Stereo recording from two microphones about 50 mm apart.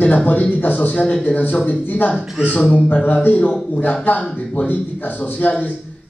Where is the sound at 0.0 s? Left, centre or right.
Left.